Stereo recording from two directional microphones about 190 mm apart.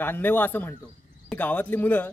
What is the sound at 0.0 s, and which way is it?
A man's voice, 10° left (ahead or behind).